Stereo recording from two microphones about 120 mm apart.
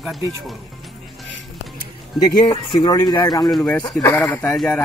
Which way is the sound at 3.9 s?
25° left (ahead or behind).